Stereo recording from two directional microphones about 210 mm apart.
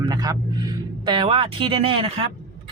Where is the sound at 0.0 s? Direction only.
20° right (ahead or behind).